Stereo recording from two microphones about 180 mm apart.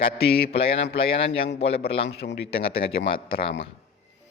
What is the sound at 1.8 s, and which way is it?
Speech, 85° left.